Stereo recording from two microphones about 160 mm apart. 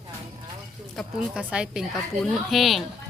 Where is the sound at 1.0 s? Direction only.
Centre (ahead or behind).